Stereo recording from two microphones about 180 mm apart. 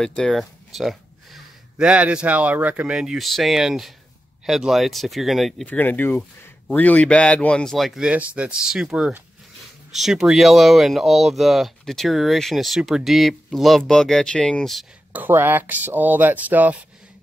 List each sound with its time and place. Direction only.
0.0 s speech: 5° left (ahead or behind)
15.2 s speech: 10° right (ahead or behind)